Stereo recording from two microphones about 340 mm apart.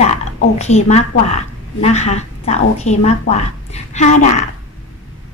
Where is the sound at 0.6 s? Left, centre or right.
Centre.